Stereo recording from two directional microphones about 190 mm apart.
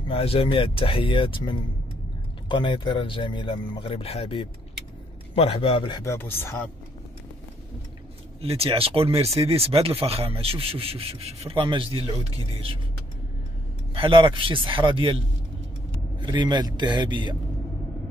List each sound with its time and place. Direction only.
0.1 s speech: 30° left (ahead or behind); by 6.7 s 10° left (ahead or behind)
8.4 s speech: 30° right (ahead or behind)
13.9 s a man's voice: 25° right (ahead or behind)